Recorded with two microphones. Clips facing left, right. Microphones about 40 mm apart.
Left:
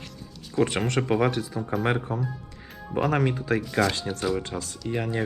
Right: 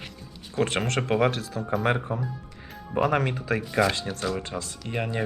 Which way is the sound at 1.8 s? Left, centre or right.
Centre.